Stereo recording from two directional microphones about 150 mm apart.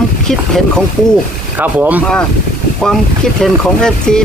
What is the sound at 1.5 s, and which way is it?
Speech, 10° right (ahead or behind).